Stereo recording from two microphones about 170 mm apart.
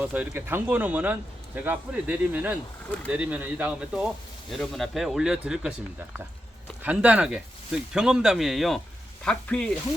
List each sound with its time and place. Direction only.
0.0 s speech: 10° right (ahead or behind)
6.8 s speech: 5° right (ahead or behind)